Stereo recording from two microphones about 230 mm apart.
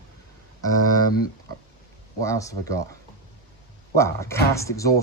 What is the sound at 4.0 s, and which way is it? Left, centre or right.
Speech, centre.